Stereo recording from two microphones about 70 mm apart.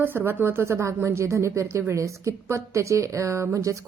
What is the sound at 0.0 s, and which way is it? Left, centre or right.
A woman's voice, right.